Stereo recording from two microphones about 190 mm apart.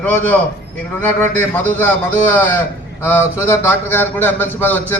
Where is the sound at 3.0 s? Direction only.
10° left (ahead or behind).